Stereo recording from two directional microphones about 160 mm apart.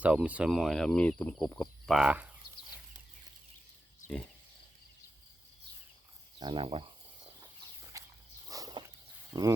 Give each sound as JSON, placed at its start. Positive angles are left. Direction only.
{"t": 0.0, "sound": "speech", "side_deg": -5}
{"t": 1.9, "sound": "speech", "side_deg": -5}
{"t": 6.4, "sound": "a sound", "side_deg": -30}
{"t": 7.9, "sound": "walk", "side_deg": -20}
{"t": 8.4, "sound": "a sound", "side_deg": -20}
{"t": 9.3, "sound": "speech", "side_deg": -20}